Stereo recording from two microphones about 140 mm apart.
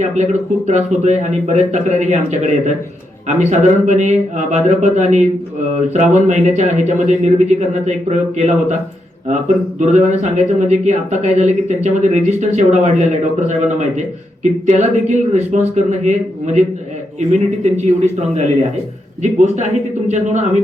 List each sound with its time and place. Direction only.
0.0 s speech: 60° right (ahead or behind)